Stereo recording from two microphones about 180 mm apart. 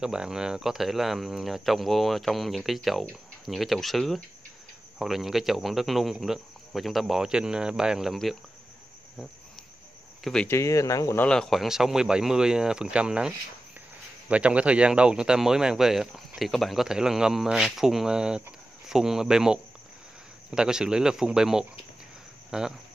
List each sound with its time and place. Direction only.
0.0 s speech: 5° right (ahead or behind)
10.2 s speech: 5° left (ahead or behind)
11.2 s speech: 5° left (ahead or behind)
14.3 s speech: 5° right (ahead or behind)